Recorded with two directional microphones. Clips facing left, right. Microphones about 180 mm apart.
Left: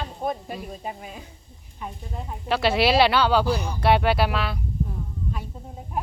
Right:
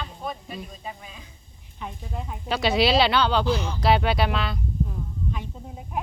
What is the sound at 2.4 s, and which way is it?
Speech, 5° left (ahead or behind).